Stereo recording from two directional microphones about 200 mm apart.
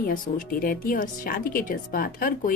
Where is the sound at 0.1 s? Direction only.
45° left (ahead or behind).